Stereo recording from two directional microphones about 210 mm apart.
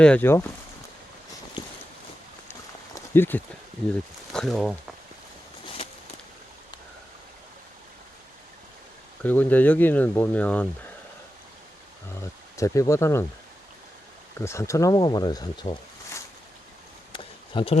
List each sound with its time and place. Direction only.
0.0 s speech: 5° left (ahead or behind)
2.5 s run: 10° left (ahead or behind)
4.3 s speech: centre (ahead or behind)
5.6 s a sound: 25° left (ahead or behind)
9.2 s speech: 10° left (ahead or behind)
12.5 s speech: 15° left (ahead or behind)
14.3 s speech: 15° left (ahead or behind)
17.1 s a sound: 25° left (ahead or behind)